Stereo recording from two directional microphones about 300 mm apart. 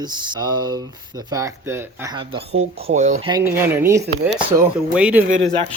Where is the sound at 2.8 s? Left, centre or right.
Right.